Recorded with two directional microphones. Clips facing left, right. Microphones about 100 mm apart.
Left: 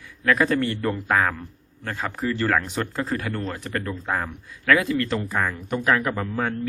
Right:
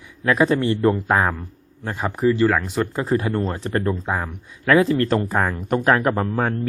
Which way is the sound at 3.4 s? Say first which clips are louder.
Right 6 dB; 35° right (ahead or behind).